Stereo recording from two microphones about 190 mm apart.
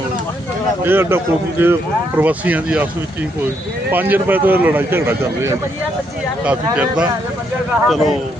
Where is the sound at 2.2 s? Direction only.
10° right (ahead or behind).